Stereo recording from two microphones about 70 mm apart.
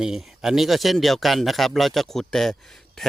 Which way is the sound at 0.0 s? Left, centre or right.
Centre.